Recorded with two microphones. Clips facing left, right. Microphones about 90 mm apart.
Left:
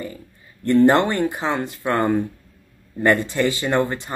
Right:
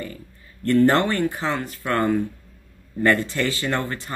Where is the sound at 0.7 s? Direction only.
20° left (ahead or behind).